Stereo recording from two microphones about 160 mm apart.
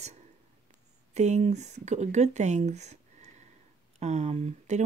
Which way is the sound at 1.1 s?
45° right (ahead or behind).